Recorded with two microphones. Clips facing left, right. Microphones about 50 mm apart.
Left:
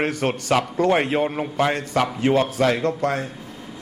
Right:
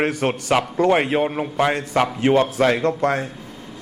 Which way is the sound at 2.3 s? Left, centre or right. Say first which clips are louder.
Right 2 dB; right.